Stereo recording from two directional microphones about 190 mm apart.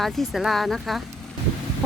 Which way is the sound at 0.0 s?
Centre (ahead or behind).